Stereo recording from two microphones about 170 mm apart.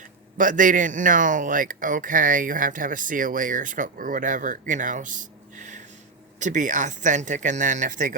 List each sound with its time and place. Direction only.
0.3 s speech: 50° right (ahead or behind)